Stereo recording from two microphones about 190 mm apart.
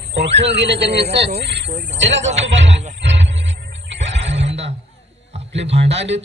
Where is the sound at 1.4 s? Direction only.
65° right (ahead or behind).